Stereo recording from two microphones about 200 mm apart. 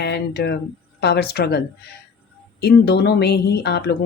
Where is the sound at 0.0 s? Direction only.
55° left (ahead or behind).